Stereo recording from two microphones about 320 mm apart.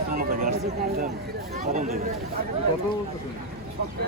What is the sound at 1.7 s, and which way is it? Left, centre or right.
Speech, right.